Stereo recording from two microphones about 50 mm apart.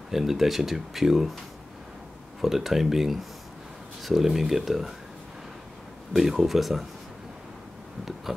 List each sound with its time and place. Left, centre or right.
0.1 s speech: centre
2.4 s speech: centre
6.1 s speech: centre